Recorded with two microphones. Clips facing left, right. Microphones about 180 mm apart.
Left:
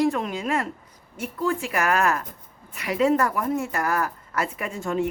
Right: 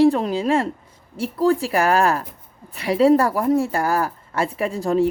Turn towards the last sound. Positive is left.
turn(degrees=-35)  # may be behind; listen again after turning